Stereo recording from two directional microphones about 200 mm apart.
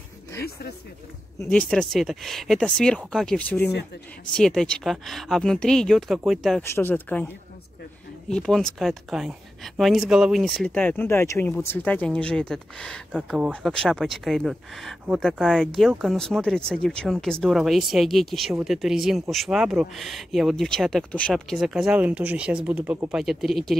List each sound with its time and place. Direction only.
1.4 s a woman's voice: 5° left (ahead or behind)
3.6 s speech: 55° left (ahead or behind)
4.4 s a woman's voice: 5° left (ahead or behind)
6.6 s speech: 10° left (ahead or behind)
8.3 s a woman's voice: 5° left (ahead or behind)